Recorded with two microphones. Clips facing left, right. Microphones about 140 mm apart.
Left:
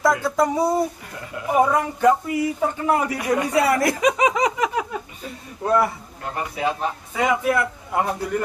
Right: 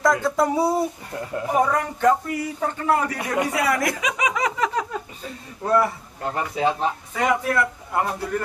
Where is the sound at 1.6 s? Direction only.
10° left (ahead or behind).